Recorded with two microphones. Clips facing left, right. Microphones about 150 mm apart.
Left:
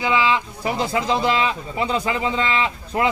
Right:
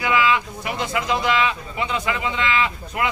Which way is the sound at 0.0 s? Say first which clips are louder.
Even; 25° left (ahead or behind).